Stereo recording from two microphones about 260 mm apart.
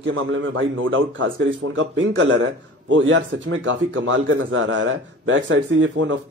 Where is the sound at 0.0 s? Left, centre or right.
Right.